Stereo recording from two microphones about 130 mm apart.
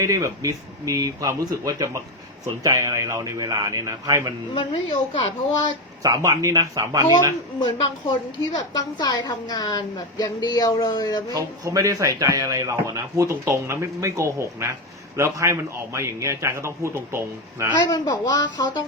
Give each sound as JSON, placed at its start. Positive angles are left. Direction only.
{"t": 0.0, "sound": "a man's voice", "side_deg": -25}
{"t": 4.5, "sound": "a woman's voice", "side_deg": 40}
{"t": 6.0, "sound": "a man's voice", "side_deg": -25}
{"t": 8.5, "sound": "a woman's voice", "side_deg": 30}
{"t": 11.3, "sound": "a man's voice", "side_deg": -25}
{"t": 17.7, "sound": "a woman's voice", "side_deg": 30}